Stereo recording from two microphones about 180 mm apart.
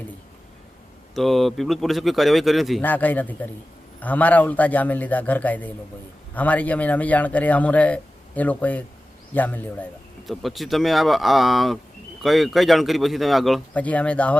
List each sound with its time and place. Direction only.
1.1 s speech: centre (ahead or behind)
2.8 s a man's voice: 10° left (ahead or behind)